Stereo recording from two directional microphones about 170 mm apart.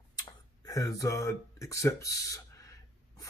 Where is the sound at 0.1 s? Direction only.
25° left (ahead or behind).